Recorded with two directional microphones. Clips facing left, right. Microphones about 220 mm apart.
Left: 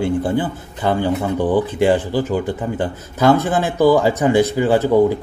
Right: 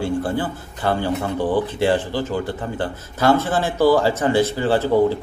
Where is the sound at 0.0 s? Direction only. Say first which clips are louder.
Left 3 dB; 20° left (ahead or behind).